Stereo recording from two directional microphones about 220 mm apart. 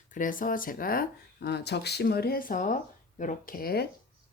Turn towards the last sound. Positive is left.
turn(degrees=45)  # may be behind; listen again after turning